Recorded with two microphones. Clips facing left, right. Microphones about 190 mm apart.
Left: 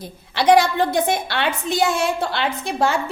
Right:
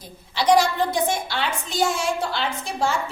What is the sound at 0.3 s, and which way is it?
A woman's voice, 60° left (ahead or behind).